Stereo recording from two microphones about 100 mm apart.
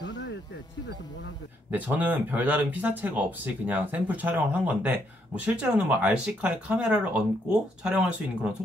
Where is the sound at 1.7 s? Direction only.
15° right (ahead or behind).